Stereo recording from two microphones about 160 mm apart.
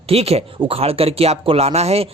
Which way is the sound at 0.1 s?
40° right (ahead or behind).